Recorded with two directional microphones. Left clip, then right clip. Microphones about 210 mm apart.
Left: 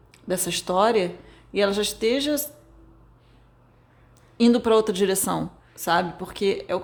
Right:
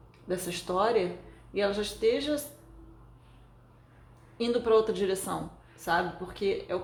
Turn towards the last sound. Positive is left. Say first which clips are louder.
# left 6 dB
turn(degrees=50)  # may be behind; listen again after turning